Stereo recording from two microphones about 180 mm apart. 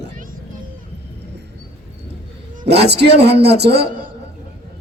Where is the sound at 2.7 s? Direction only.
65° right (ahead or behind).